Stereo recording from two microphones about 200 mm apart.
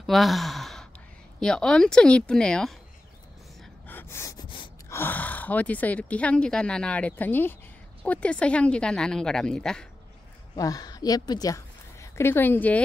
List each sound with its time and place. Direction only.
0.0 s sigh: centre (ahead or behind)
1.4 s speech: 5° left (ahead or behind)
3.8 s gasp: 10° left (ahead or behind)
4.9 s speech: 10° left (ahead or behind)
10.5 s a woman's voice: 20° left (ahead or behind)